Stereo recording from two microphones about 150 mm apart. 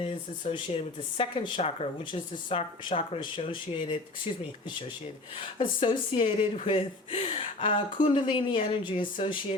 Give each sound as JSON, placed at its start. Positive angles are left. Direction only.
{"t": 0.5, "sound": "speech", "side_deg": 35}
{"t": 5.8, "sound": "speech", "side_deg": 35}